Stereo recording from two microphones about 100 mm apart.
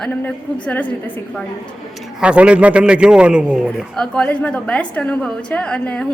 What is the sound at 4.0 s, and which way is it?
A woman's voice, 10° left (ahead or behind).